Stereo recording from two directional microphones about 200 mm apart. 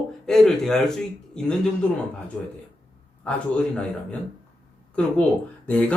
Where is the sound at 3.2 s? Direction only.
5° left (ahead or behind).